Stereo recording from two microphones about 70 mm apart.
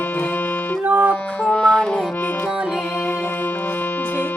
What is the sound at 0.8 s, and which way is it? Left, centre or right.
Music, right.